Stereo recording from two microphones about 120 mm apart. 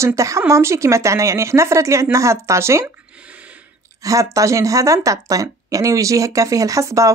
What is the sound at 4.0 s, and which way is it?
Speech, 30° right (ahead or behind).